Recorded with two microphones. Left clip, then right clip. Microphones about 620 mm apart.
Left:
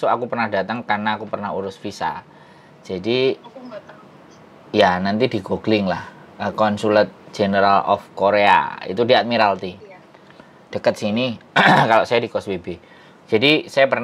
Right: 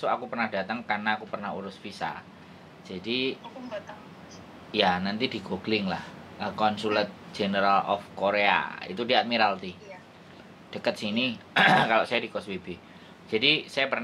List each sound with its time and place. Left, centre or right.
0.0 s speech: left
4.6 s speech: left